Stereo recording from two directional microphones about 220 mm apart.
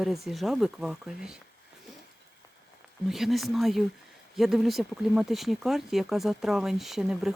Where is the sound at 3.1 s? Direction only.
Centre (ahead or behind).